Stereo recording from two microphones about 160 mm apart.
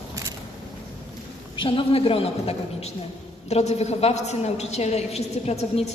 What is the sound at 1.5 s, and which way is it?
A woman's voice, 30° left (ahead or behind).